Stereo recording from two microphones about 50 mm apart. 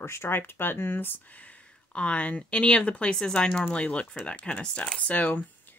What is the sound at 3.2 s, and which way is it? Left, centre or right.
Speech, centre.